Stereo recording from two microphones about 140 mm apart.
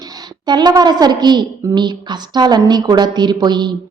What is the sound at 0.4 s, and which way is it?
Speech, 30° right (ahead or behind).